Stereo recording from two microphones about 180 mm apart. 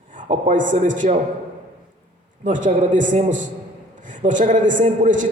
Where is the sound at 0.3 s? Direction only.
45° right (ahead or behind).